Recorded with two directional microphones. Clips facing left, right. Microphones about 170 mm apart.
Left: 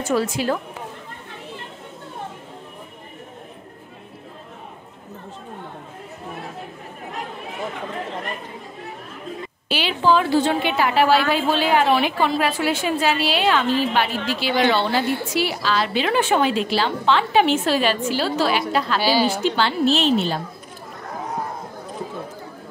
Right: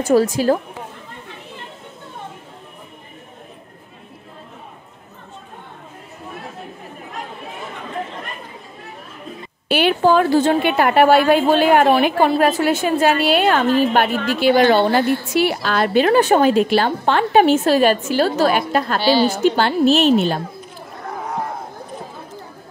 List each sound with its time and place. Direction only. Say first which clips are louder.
0.0 s a woman's voice: right 6 dB; 40° right (ahead or behind)
9.7 s a woman's voice: right 4 dB; 55° right (ahead or behind)
18.9 s a woman's voice: right 4 dB; 10° left (ahead or behind)
19.4 s a woman's voice: right 5 dB; 50° right (ahead or behind)